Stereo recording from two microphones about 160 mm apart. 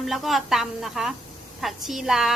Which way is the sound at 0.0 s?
Centre (ahead or behind).